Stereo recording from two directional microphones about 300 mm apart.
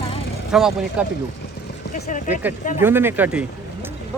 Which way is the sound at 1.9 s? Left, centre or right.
Left.